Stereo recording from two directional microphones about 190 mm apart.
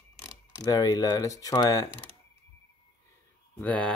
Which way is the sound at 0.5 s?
15° left (ahead or behind).